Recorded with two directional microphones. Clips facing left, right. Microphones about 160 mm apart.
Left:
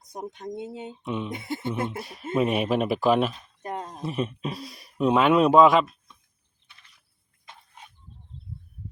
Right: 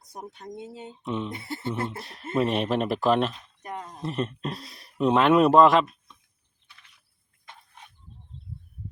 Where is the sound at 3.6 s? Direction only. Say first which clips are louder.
Left 4 dB; 30° left (ahead or behind).